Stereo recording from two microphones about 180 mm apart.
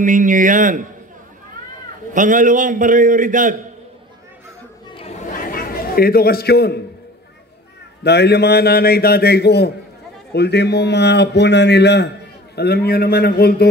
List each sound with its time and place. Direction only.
0.0 s a man's voice: 45° right (ahead or behind)
2.1 s a man's voice: 45° right (ahead or behind)
5.4 s a sound: 55° left (ahead or behind)
8.0 s a man's voice: 65° left (ahead or behind)